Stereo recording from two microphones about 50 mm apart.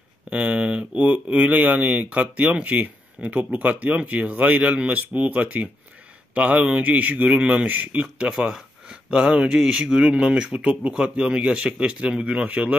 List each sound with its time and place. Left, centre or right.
0.3 s a man's voice: right